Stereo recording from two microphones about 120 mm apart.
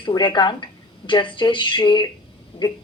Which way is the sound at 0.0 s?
40° left (ahead or behind).